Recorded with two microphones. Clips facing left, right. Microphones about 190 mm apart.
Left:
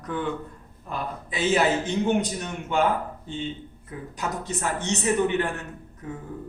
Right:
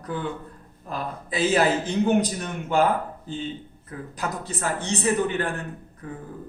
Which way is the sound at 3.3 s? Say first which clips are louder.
Even; 35° right (ahead or behind).